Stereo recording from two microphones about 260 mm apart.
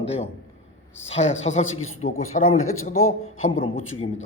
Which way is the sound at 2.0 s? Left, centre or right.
Left.